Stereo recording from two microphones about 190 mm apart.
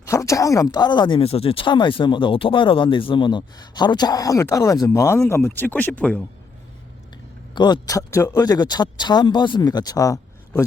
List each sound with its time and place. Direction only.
0.0 s speech: 15° left (ahead or behind)
7.5 s speech: 20° left (ahead or behind)